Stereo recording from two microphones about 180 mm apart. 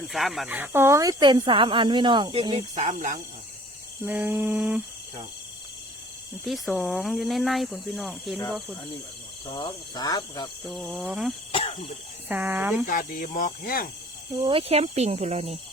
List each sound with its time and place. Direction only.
0.1 s speech: centre (ahead or behind); by 2.6 s 25° right (ahead or behind)
2.7 s speech: 40° right (ahead or behind)
4.0 s a sound: 10° right (ahead or behind)
6.4 s speech: centre (ahead or behind)
9.5 s speech: 25° left (ahead or behind)
10.7 s speech: centre (ahead or behind)
12.3 s a sound: 10° right (ahead or behind)
12.9 s speech: 50° left (ahead or behind)
14.4 s speech: 35° right (ahead or behind)